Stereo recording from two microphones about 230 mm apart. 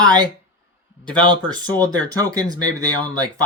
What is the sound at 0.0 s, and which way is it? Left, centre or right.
Speech, centre.